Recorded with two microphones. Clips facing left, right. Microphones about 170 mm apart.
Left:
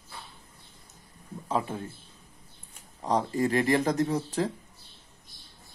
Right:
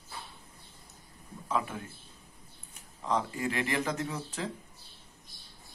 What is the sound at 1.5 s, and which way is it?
Speech, 30° left (ahead or behind).